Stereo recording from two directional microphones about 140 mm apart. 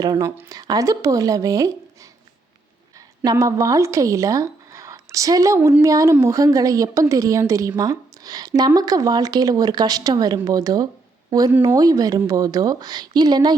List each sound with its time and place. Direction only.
0.0 s a woman's voice: 25° right (ahead or behind)
3.2 s a woman's voice: 25° right (ahead or behind)